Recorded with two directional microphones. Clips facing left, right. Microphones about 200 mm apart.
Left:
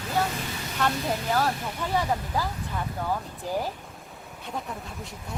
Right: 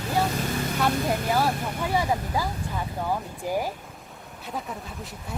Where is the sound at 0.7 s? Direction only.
10° right (ahead or behind).